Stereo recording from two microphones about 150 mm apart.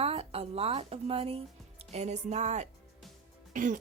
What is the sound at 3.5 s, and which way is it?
Music, 60° right (ahead or behind).